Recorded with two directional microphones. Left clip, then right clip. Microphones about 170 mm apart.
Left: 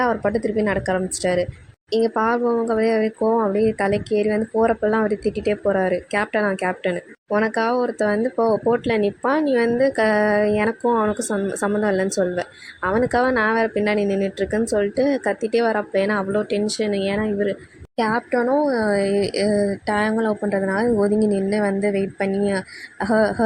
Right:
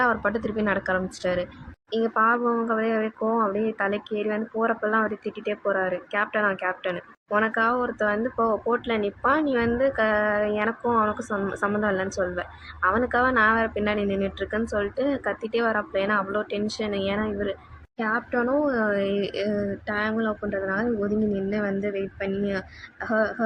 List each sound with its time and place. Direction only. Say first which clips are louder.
0.0 s a woman's voice: left 3 dB; 35° left (ahead or behind); by 23.3 s 50° left (ahead or behind)